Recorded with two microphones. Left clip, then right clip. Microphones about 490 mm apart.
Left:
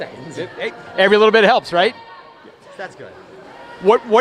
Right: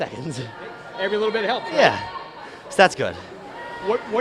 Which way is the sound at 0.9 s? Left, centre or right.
Left.